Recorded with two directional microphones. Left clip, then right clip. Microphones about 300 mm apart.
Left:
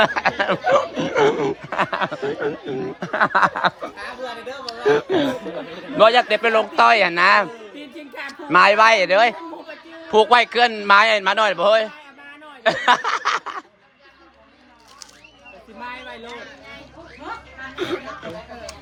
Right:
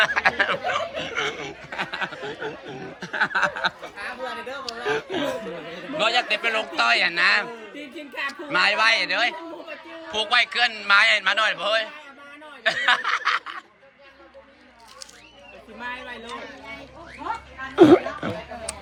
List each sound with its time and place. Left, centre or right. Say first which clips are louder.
0.0 s speech: left 2 dB; centre